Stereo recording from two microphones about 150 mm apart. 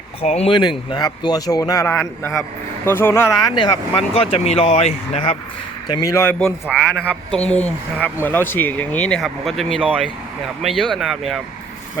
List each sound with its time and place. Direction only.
0.2 s speech: 45° left (ahead or behind)
5.9 s speech: 20° left (ahead or behind)
6.7 s speech: 5° left (ahead or behind)
9.8 s speech: 10° right (ahead or behind)